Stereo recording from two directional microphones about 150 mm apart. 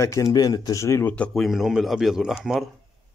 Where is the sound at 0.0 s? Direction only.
20° left (ahead or behind).